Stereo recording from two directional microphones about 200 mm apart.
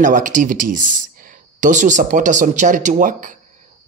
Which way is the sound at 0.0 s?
40° right (ahead or behind).